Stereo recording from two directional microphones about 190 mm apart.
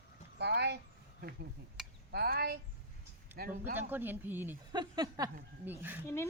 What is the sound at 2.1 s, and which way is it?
Speech, 55° right (ahead or behind).